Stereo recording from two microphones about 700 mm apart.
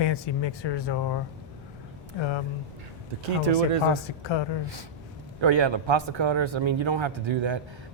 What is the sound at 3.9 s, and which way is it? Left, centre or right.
Speech, left.